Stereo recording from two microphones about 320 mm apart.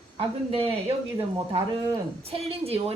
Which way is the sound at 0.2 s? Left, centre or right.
Centre.